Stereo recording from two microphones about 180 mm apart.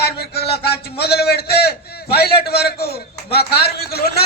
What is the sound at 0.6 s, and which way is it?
A man's voice, 65° left (ahead or behind).